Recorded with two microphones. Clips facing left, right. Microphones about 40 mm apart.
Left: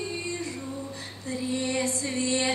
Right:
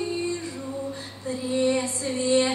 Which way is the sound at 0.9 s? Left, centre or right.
Right.